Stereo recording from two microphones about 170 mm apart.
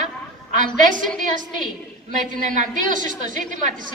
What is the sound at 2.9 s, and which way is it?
Speech, 50° right (ahead or behind).